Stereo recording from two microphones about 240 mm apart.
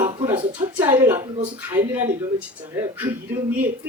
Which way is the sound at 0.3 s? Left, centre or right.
Right.